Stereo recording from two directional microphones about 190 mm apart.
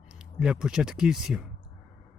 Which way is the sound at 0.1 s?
5° right (ahead or behind).